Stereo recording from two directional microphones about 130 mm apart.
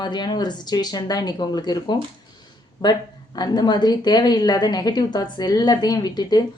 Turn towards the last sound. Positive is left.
turn(degrees=30)  # may be behind; listen again after turning